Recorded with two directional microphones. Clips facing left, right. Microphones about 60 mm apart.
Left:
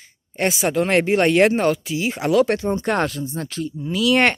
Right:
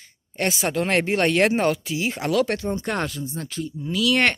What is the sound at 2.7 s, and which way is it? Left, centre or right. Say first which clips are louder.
Speech: left 5 dB; left.